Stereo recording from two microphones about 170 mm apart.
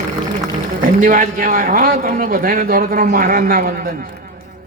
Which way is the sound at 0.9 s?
50° right (ahead or behind).